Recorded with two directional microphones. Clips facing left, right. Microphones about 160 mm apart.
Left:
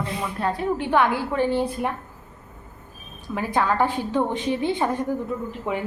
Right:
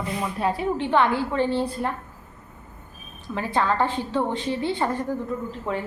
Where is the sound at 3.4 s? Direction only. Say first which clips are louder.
Left 1 dB; 10° left (ahead or behind).